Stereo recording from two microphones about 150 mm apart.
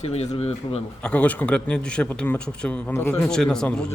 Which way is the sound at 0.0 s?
45° left (ahead or behind).